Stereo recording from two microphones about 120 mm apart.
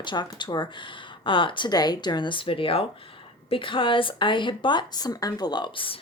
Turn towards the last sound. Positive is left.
turn(degrees=50)  # may be behind; listen again after turning